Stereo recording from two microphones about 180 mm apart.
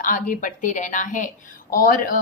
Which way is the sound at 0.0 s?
45° left (ahead or behind).